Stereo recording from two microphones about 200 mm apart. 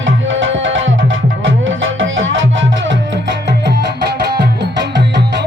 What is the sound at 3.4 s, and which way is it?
Music, 60° right (ahead or behind).